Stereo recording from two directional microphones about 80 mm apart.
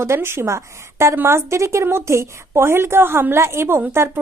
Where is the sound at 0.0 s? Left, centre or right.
Right.